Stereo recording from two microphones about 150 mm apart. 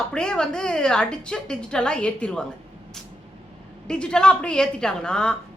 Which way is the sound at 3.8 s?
5° left (ahead or behind).